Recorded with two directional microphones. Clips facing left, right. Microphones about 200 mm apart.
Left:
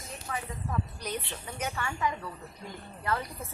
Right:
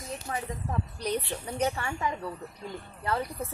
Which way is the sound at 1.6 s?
30° right (ahead or behind).